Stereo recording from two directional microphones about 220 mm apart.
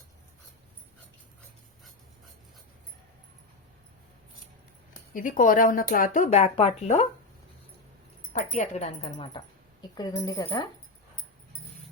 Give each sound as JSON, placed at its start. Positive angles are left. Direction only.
{"t": 5.1, "sound": "speech", "side_deg": 35}
{"t": 8.3, "sound": "speech", "side_deg": 35}